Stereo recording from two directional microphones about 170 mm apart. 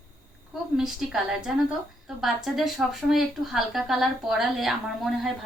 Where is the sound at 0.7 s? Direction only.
Centre (ahead or behind).